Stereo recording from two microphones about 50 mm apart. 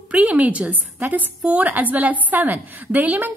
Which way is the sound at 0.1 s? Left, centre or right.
Right.